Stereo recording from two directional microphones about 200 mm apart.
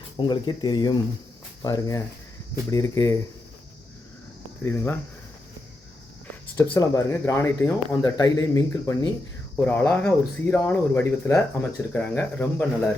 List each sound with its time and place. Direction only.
0.2 s speech: 20° left (ahead or behind)
4.6 s speech: 10° left (ahead or behind)
6.6 s speech: 15° left (ahead or behind)